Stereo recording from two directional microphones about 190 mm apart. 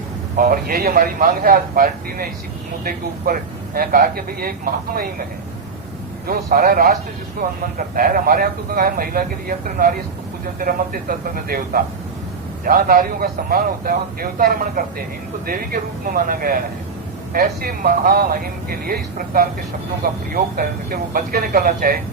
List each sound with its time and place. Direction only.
0.3 s a man's voice: 50° right (ahead or behind)
6.2 s a man's voice: 50° right (ahead or behind)